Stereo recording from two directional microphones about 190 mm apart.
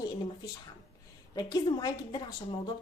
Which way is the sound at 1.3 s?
20° left (ahead or behind).